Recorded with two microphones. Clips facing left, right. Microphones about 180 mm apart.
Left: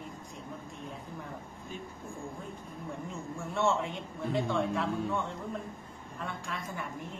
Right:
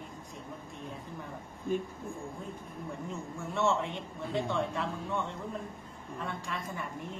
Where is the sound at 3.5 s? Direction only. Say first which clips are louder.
Even; centre (ahead or behind).